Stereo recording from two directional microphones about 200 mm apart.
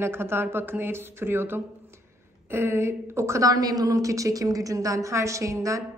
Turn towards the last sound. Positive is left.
turn(degrees=-15)  # may be behind; listen again after turning